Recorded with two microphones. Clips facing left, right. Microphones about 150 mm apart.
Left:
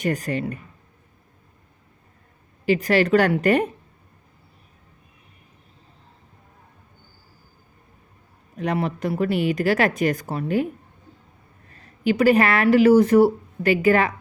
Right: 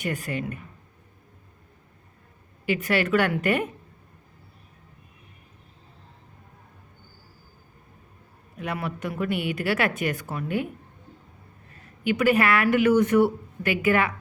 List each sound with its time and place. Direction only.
0.0 s speech: 40° left (ahead or behind)
2.6 s speech: 35° left (ahead or behind)
8.5 s speech: 35° left (ahead or behind)
12.0 s speech: 35° left (ahead or behind)